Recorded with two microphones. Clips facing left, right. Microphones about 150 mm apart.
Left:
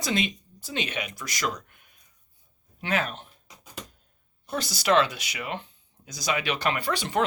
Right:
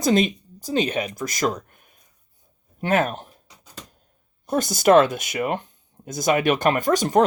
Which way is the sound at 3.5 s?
15° left (ahead or behind).